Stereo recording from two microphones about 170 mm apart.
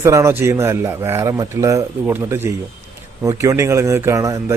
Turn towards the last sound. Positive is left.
turn(degrees=-20)  # may be behind; listen again after turning